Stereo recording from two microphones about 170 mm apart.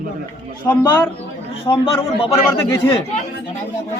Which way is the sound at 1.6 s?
30° left (ahead or behind).